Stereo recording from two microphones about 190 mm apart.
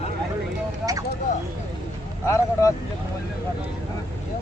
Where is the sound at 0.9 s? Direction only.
20° right (ahead or behind).